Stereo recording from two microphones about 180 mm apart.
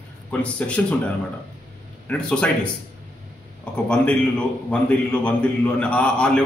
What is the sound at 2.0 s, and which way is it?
Speech, 5° left (ahead or behind).